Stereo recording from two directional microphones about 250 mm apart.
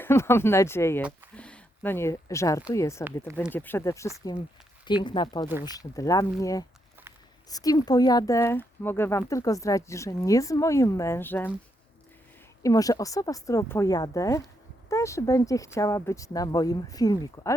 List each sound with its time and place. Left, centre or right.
0.0 s speech: centre
1.4 s a sound: centre
2.7 s speech: centre
12.6 s speech: centre